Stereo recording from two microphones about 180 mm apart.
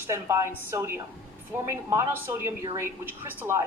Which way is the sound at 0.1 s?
15° right (ahead or behind).